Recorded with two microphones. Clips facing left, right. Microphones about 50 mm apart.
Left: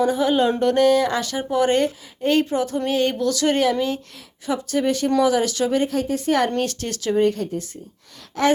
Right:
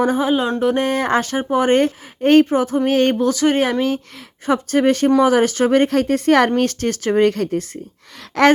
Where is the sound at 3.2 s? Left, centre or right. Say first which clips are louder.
Right 3 dB; right.